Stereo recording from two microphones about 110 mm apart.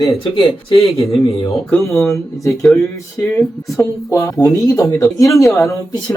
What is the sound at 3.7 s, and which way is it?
Speech, 30° left (ahead or behind).